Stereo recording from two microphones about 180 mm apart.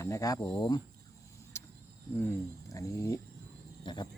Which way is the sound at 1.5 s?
15° left (ahead or behind).